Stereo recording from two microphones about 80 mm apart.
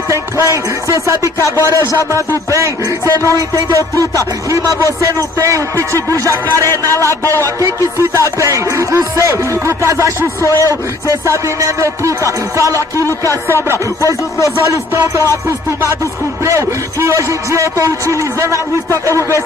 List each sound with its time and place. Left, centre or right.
0.1 s speech: right
3.3 s music: right
5.0 s speech: right
15.0 s speech: right
16.4 s speech: right